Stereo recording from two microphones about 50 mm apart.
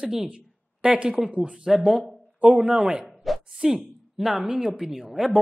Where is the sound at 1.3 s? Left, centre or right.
Right.